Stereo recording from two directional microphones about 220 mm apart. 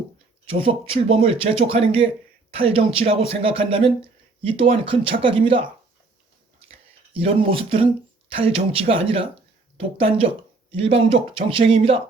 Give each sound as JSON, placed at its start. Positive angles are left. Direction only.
{"t": 0.6, "sound": "speech", "side_deg": -25}
{"t": 6.7, "sound": "a sound", "side_deg": -25}
{"t": 8.3, "sound": "speech", "side_deg": -25}